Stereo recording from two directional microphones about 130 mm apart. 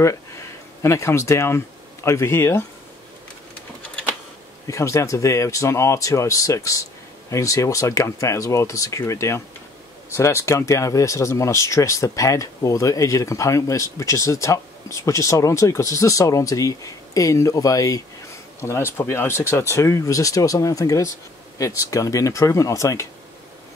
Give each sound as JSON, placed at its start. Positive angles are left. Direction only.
{"t": 0.0, "sound": "speech", "side_deg": 20}
{"t": 4.6, "sound": "speech", "side_deg": 25}